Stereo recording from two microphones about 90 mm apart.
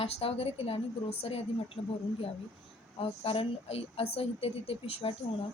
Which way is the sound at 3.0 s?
90° left.